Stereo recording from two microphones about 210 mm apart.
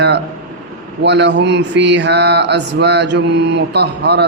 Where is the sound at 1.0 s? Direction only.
55° right (ahead or behind).